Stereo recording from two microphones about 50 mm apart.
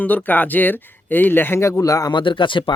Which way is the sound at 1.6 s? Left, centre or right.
Left.